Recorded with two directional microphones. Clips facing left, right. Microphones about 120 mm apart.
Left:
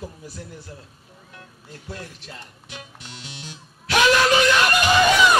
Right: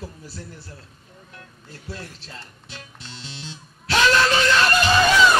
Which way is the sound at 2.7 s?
15° left (ahead or behind).